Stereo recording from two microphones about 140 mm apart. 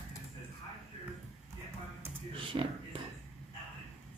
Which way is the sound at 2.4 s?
35° right (ahead or behind).